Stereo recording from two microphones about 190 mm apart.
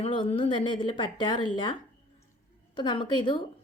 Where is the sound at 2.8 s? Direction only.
25° left (ahead or behind).